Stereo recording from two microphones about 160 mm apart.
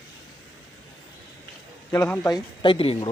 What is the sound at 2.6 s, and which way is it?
Speech, 35° left (ahead or behind).